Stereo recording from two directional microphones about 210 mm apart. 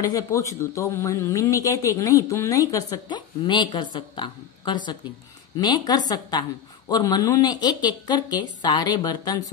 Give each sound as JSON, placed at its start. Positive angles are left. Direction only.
{"t": 0.0, "sound": "speech", "side_deg": 15}